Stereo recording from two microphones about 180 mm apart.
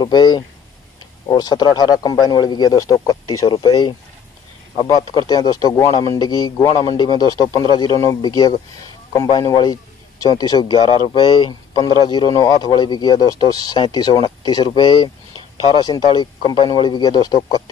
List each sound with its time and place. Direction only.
0.0 s speech: 25° left (ahead or behind)